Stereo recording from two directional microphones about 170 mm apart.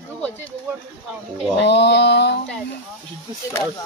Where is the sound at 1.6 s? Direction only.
85° left.